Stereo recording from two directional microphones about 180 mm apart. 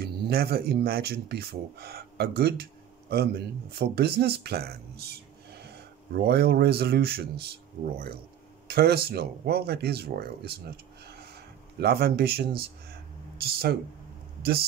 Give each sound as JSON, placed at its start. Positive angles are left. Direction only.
{"t": 0.0, "sound": "speech", "side_deg": -60}
{"t": 8.6, "sound": "speech", "side_deg": -60}
{"t": 11.8, "sound": "speech", "side_deg": -60}